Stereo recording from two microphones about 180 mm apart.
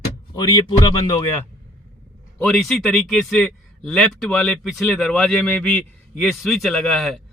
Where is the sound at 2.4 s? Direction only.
Centre (ahead or behind).